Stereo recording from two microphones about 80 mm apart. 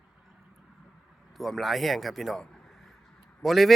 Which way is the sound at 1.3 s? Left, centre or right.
Centre.